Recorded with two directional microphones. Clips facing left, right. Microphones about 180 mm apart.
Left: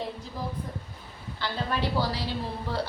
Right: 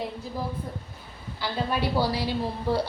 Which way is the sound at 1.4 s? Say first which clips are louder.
Right 2 dB; 10° right (ahead or behind).